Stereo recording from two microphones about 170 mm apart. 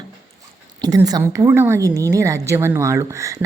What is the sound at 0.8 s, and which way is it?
A woman's voice, 20° right (ahead or behind).